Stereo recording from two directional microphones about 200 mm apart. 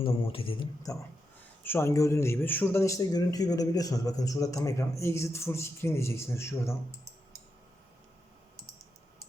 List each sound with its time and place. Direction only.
0.0 s a man's voice: 25° left (ahead or behind)